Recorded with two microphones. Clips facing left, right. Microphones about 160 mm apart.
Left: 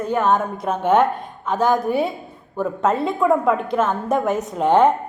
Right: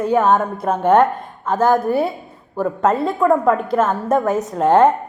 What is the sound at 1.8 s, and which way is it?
A woman's voice, centre (ahead or behind).